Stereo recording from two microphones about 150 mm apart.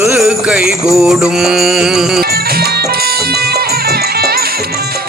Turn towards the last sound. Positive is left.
turn(degrees=-90)